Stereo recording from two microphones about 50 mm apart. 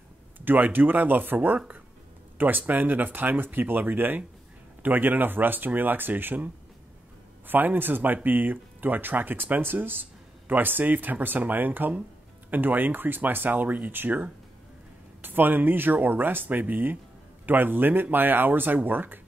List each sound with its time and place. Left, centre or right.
0.5 s speech: right